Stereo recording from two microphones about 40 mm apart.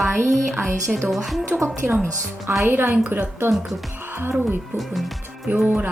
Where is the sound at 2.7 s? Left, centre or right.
Right.